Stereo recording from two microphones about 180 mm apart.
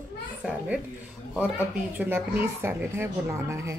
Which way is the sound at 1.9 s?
10° right (ahead or behind).